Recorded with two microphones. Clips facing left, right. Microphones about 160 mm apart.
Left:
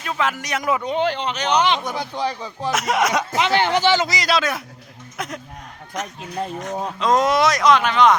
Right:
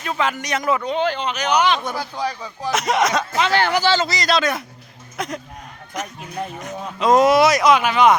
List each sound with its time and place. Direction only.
0.0 s speech: centre (ahead or behind)
1.0 s speech: 25° left (ahead or behind)
2.6 s speech: 5° left (ahead or behind)